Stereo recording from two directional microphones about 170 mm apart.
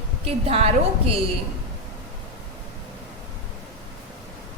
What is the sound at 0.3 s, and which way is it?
Speech, 35° right (ahead or behind).